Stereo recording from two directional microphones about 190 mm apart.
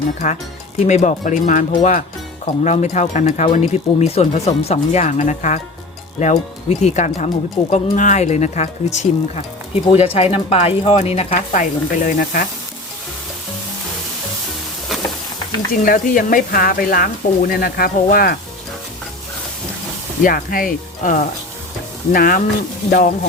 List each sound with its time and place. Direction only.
0.9 s speech: 40° left (ahead or behind)
15.7 s speech: 45° left (ahead or behind)
20.2 s speech: 50° left (ahead or behind)